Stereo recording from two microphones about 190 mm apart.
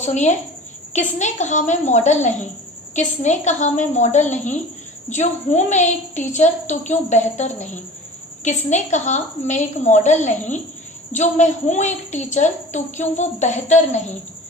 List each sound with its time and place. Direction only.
0.0 s a woman's voice: 40° left (ahead or behind)